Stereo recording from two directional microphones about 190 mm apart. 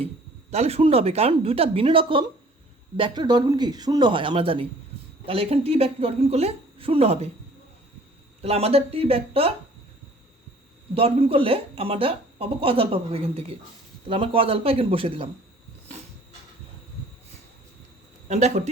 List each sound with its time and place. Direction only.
0.5 s speech: 35° right (ahead or behind)
8.4 s speech: 30° right (ahead or behind)
10.9 s speech: 30° right (ahead or behind)
18.3 s speech: 35° right (ahead or behind)